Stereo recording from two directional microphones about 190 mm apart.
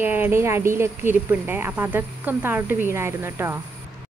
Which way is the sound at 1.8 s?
10° right (ahead or behind).